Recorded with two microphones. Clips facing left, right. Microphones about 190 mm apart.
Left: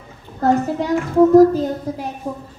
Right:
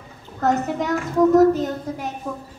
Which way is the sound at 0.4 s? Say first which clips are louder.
Left 4 dB; 30° left (ahead or behind).